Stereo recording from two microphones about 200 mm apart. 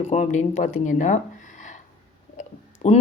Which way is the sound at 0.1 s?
35° left (ahead or behind).